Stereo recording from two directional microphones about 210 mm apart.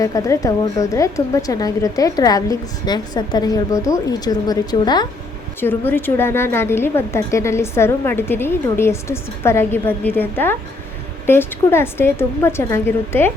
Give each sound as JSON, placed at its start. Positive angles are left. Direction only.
{"t": 0.0, "sound": "a woman's voice", "side_deg": 15}